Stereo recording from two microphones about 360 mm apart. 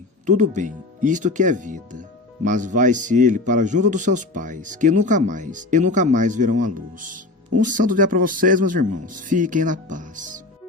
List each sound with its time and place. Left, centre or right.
0.3 s speech: right